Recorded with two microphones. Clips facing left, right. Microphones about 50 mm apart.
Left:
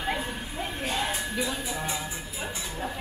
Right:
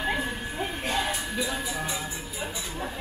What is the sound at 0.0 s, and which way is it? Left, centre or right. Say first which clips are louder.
Music: right 2 dB; centre.